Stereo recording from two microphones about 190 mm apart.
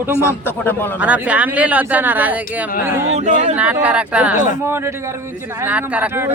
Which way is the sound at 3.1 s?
40° right (ahead or behind).